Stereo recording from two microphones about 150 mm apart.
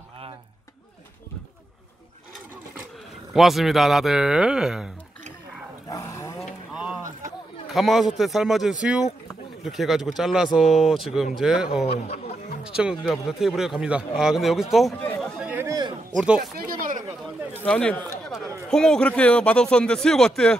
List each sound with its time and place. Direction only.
3.3 s speech: centre (ahead or behind)
5.9 s dog: 25° left (ahead or behind)
6.4 s vehicle: 5° right (ahead or behind)
7.6 s speech: centre (ahead or behind)
11.8 s speech: 45° left (ahead or behind)
12.6 s speech: 5° right (ahead or behind)
15.3 s a sound: 10° right (ahead or behind)
15.6 s a sound: 25° right (ahead or behind)
16.5 s a sound: 70° right (ahead or behind)
17.6 s a man's voice: 5° left (ahead or behind)